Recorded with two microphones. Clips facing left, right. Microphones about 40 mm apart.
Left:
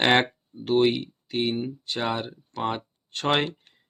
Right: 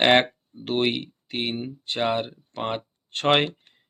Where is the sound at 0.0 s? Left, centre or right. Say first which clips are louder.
Right 2 dB; right.